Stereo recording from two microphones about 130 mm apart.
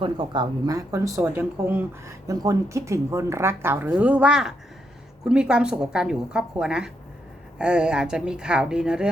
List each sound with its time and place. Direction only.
0.0 s a woman's voice: 35° right (ahead or behind); by 2.1 s 15° right (ahead or behind)
2.2 s a woman's voice: 25° right (ahead or behind); by 9.0 s 5° right (ahead or behind)